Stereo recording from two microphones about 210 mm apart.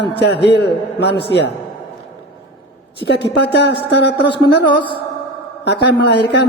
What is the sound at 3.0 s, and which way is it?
Speech, 55° left (ahead or behind).